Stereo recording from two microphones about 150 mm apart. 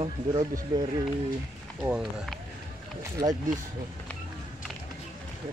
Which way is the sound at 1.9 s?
5° right (ahead or behind).